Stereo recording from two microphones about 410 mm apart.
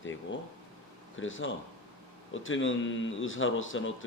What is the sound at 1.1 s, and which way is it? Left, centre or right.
Speech, left.